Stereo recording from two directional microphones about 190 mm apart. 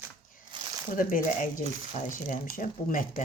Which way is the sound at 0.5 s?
25° right (ahead or behind).